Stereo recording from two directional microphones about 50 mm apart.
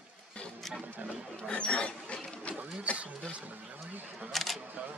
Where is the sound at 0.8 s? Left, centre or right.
Right.